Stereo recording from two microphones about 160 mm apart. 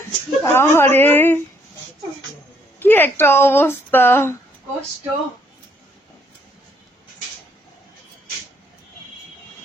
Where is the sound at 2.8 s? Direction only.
15° left (ahead or behind).